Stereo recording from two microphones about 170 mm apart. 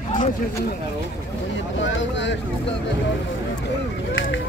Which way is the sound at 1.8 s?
90° left.